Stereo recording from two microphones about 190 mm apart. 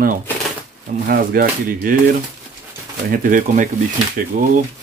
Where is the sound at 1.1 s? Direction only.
50° right (ahead or behind).